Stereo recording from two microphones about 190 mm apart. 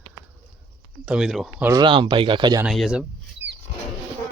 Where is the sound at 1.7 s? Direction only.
25° right (ahead or behind).